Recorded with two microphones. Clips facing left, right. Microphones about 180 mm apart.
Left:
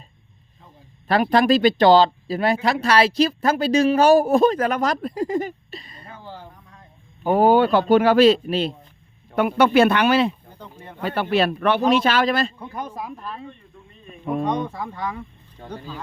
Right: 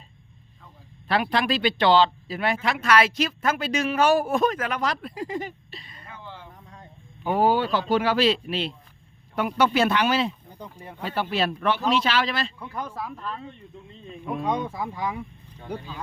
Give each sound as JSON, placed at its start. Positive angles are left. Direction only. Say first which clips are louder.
{"t": 1.0, "sound": "speech", "louder": "left 7 dB", "side_deg": 45}
{"t": 7.3, "sound": "speech", "louder": "left 6 dB", "side_deg": 50}
{"t": 9.3, "sound": "speech", "louder": "left 6 dB", "side_deg": 60}
{"t": 10.6, "sound": "speech", "louder": "right 4 dB", "side_deg": -10}
{"t": 11.0, "sound": "speech", "louder": "left 5 dB", "side_deg": 60}
{"t": 11.9, "sound": "speech", "louder": "left 5 dB", "side_deg": 50}
{"t": 12.5, "sound": "speech", "louder": "left 2 dB", "side_deg": 20}
{"t": 14.4, "sound": "speech", "louder": "left 2 dB", "side_deg": -5}